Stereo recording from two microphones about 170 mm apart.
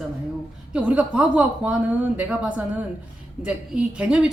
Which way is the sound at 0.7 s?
5° right (ahead or behind).